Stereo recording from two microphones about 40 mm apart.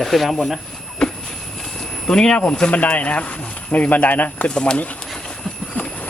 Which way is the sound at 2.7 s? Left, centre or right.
Left.